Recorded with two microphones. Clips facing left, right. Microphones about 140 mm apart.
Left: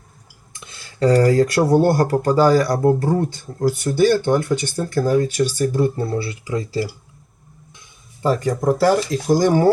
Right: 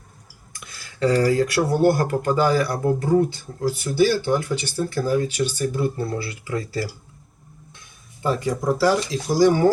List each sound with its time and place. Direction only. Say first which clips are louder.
0.5 s speech: left 1 dB; 25° left (ahead or behind)
6.1 s speech: left 4 dB; 25° left (ahead or behind)
8.2 s speech: left 4 dB; 45° left (ahead or behind)